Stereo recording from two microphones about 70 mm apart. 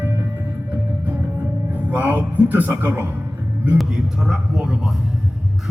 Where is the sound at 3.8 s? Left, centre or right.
Centre.